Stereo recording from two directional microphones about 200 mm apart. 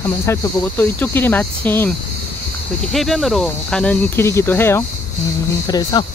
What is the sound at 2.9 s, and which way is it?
Speech, centre (ahead or behind).